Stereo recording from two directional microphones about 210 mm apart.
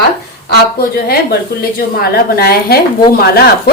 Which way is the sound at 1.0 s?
50° left (ahead or behind).